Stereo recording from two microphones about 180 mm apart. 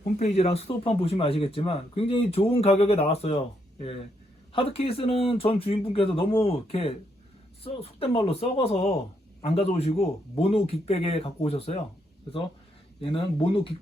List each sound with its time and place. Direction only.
0.0 s speech: 35° left (ahead or behind)
13.0 s speech: 30° left (ahead or behind)